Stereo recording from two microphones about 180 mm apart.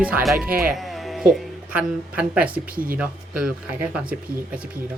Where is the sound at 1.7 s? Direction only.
5° right (ahead or behind).